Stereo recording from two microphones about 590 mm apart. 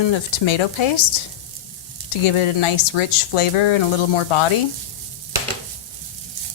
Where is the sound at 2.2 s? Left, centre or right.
Left.